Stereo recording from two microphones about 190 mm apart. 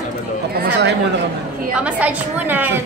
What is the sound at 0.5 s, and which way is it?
Speech, 60° right (ahead or behind).